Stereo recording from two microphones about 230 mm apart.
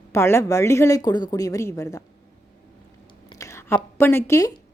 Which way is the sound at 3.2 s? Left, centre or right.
Centre.